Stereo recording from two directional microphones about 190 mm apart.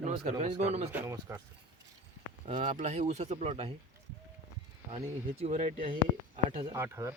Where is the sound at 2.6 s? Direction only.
40° right (ahead or behind).